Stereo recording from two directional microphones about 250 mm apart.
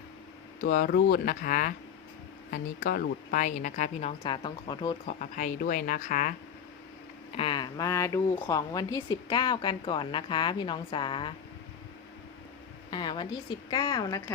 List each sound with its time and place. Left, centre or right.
0.6 s speech: left; by 5.1 s centre
5.2 s speech: left
7.3 s speech: centre
12.9 s a woman's voice: centre